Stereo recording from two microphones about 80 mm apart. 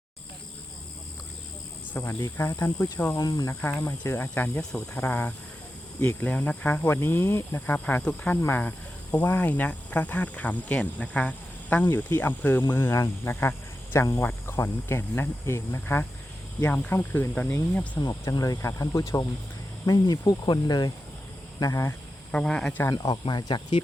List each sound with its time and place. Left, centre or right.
2.0 s speech: left
3.6 s speech: left
4.4 s speech: centre
6.8 s speech: left
7.9 s speech: centre
12.1 s speech: left
12.7 s speech: left
18.1 s speech: left
19.8 s speech: left
21.6 s speech: left
22.3 s speech: centre
23.4 s speech: left